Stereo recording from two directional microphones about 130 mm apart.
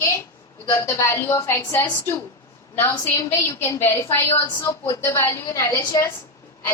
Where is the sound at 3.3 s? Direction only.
20° left (ahead or behind).